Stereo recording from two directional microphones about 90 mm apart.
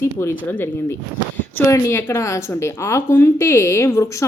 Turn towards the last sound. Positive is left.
turn(degrees=35)  # may be behind; listen again after turning